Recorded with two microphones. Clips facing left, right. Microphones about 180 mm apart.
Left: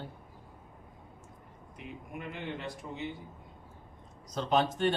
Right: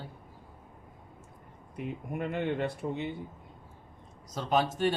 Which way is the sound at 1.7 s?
55° right (ahead or behind).